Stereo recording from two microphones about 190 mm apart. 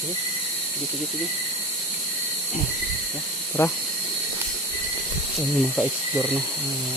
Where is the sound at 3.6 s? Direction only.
15° left (ahead or behind).